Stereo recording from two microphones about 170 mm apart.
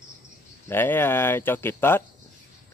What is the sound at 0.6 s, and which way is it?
Speech, 10° left (ahead or behind).